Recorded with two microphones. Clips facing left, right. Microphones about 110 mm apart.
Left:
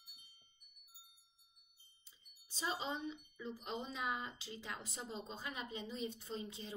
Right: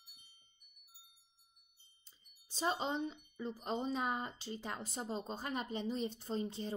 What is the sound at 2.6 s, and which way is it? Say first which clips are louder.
Speech: right 5 dB; 40° right (ahead or behind).